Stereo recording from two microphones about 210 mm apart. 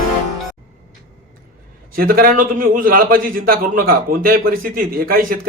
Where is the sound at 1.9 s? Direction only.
45° right (ahead or behind).